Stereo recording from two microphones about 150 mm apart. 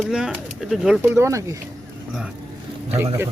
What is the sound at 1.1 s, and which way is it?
Speech, 20° right (ahead or behind).